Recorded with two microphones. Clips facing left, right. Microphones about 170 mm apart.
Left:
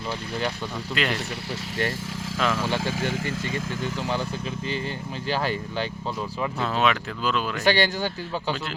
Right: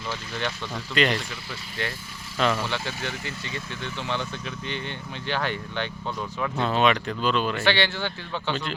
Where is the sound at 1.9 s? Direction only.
90° left.